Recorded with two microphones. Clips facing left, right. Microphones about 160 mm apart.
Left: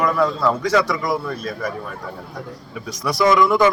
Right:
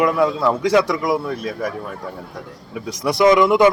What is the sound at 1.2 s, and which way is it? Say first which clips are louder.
Speech: right 2 dB; 20° right (ahead or behind).